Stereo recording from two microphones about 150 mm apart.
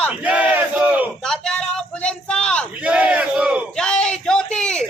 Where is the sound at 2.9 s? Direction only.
10° right (ahead or behind).